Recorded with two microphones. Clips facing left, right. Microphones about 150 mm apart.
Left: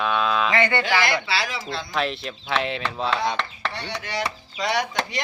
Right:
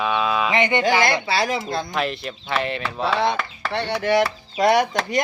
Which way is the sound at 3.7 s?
60° right (ahead or behind).